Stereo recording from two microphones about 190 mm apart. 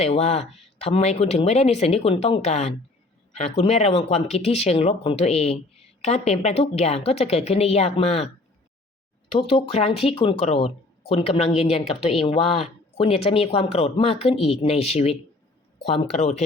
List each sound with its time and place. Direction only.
0.0 s a woman's voice: 35° left (ahead or behind)
9.3 s a woman's voice: 30° left (ahead or behind)